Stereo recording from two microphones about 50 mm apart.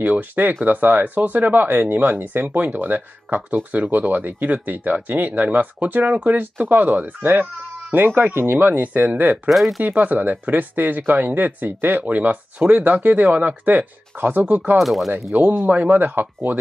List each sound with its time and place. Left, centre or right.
0.0 s speech: right
9.5 s speech: centre
9.8 s speech: right
14.8 s speech: centre
15.3 s speech: right